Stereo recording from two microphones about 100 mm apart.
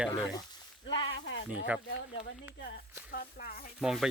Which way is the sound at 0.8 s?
50° left (ahead or behind).